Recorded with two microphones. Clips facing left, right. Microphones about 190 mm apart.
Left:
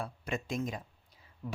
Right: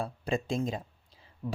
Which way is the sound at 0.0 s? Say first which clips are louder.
Right 5 dB; 30° right (ahead or behind).